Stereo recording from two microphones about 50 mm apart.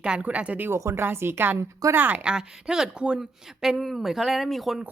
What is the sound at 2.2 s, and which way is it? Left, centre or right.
A woman's voice, centre.